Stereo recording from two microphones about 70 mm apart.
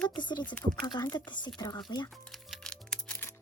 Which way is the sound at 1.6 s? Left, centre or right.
Left.